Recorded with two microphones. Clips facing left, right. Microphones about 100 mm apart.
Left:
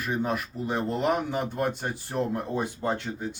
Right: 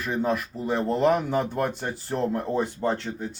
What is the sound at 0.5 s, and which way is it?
Speech, 60° right (ahead or behind).